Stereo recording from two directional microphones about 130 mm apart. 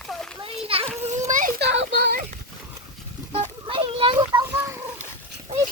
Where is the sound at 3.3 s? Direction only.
50° right (ahead or behind).